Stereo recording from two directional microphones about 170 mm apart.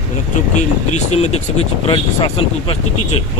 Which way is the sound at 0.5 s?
40° left (ahead or behind).